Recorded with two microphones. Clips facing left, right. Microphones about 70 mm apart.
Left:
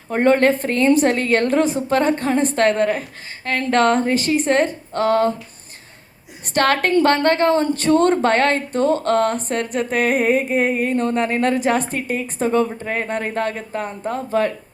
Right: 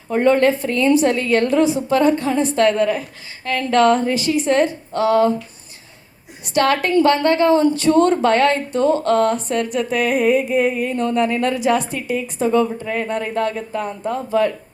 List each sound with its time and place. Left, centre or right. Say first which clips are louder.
0.1 s a woman's voice: even; left
6.5 s a woman's voice: even; left